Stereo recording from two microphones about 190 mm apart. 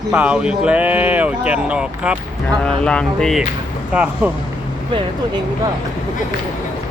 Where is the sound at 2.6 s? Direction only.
5° left (ahead or behind).